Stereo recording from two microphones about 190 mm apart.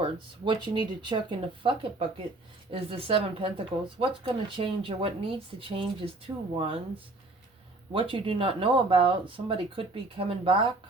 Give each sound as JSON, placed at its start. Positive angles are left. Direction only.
{"t": 0.0, "sound": "speech", "side_deg": -25}
{"t": 7.9, "sound": "speech", "side_deg": -30}